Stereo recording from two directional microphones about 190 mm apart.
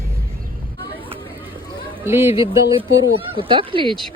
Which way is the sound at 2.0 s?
10° right (ahead or behind).